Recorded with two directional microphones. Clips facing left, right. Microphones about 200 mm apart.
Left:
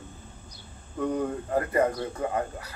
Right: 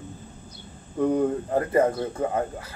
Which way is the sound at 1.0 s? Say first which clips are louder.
Right 6 dB; 20° right (ahead or behind).